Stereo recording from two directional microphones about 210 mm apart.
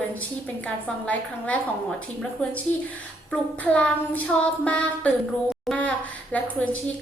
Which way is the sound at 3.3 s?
5° left (ahead or behind).